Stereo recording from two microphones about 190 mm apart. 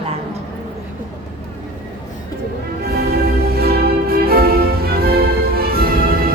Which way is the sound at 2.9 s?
55° right (ahead or behind).